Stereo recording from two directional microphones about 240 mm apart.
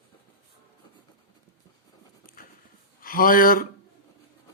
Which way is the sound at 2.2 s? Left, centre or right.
Left.